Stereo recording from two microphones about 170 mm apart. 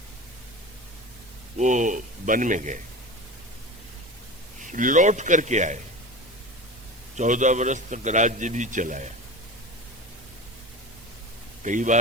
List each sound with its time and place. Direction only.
1.5 s a man's voice: 45° right (ahead or behind)
4.6 s a man's voice: 50° right (ahead or behind)
7.2 s a man's voice: 45° right (ahead or behind)
11.6 s a man's voice: 45° right (ahead or behind)